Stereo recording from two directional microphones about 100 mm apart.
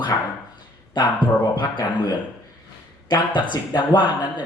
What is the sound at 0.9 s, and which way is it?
Speech, 50° left (ahead or behind).